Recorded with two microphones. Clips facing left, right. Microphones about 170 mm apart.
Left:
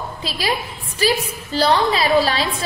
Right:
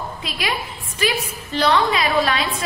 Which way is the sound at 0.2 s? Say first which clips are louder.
Left 4 dB; 35° left (ahead or behind).